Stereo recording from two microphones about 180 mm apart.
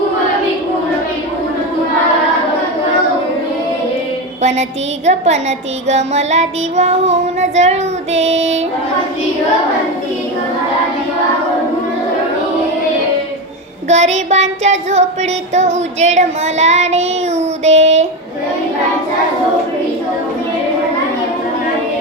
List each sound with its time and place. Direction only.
5.0 s child singing: 40° right (ahead or behind)
13.8 s child singing: 40° right (ahead or behind)